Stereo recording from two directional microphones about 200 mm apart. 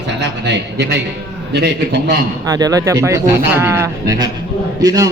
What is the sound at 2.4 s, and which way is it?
Speech, 20° right (ahead or behind).